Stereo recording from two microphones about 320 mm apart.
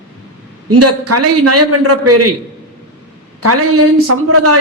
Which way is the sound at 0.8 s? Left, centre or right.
Right.